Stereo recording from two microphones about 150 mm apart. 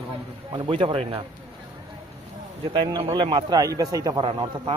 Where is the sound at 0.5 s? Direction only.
35° right (ahead or behind).